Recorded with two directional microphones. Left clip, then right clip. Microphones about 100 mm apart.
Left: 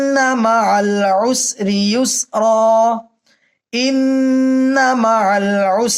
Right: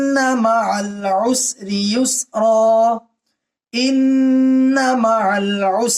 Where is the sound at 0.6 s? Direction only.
60° left (ahead or behind).